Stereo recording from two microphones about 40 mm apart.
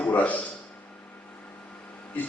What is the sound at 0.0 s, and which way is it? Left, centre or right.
Speech, left.